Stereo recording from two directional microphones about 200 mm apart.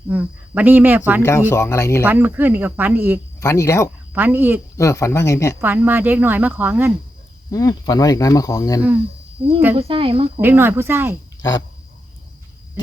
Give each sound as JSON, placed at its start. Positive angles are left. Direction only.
{"t": 0.1, "sound": "speech", "side_deg": -10}
{"t": 1.2, "sound": "speech", "side_deg": 15}
{"t": 2.0, "sound": "speech", "side_deg": -10}
{"t": 3.4, "sound": "speech", "side_deg": 15}
{"t": 4.1, "sound": "speech", "side_deg": -10}
{"t": 4.8, "sound": "speech", "side_deg": 15}
{"t": 5.5, "sound": "speech", "side_deg": -10}
{"t": 7.5, "sound": "speech", "side_deg": 15}
{"t": 9.4, "sound": "speech", "side_deg": -25}
{"t": 10.4, "sound": "speech", "side_deg": -10}